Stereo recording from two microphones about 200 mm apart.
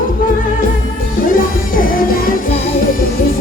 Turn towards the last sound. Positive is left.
turn(degrees=45)  # may be behind; listen again after turning